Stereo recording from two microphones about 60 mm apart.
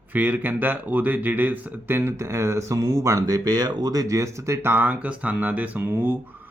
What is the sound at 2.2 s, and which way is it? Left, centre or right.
Speech, right.